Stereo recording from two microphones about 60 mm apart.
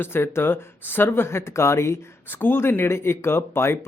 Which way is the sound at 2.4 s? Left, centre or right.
Left.